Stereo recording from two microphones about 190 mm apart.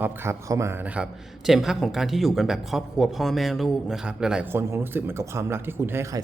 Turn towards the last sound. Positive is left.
turn(degrees=-15)  # may be behind; listen again after turning